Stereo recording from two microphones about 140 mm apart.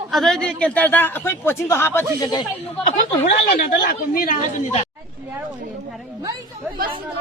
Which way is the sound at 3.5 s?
75° left (ahead or behind).